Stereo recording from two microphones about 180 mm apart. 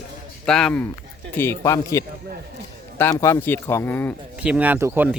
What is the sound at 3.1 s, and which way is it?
Speech, 15° left (ahead or behind).